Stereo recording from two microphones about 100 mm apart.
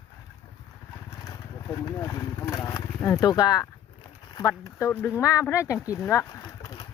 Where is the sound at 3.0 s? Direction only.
40° left (ahead or behind).